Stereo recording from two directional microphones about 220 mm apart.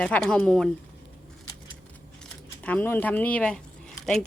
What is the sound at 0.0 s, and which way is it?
Speech, 5° left (ahead or behind).